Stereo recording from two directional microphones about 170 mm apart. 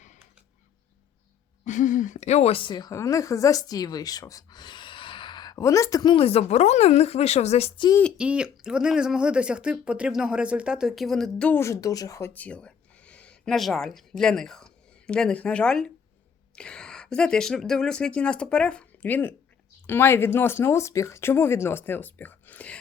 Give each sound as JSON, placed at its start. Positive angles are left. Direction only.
{"t": 1.6, "sound": "a woman's voice", "side_deg": 45}
{"t": 8.2, "sound": "speech", "side_deg": -5}